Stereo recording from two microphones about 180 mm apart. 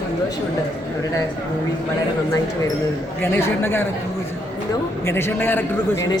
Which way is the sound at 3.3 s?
10° left (ahead or behind).